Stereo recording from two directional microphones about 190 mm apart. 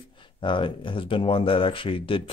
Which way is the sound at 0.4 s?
25° left (ahead or behind).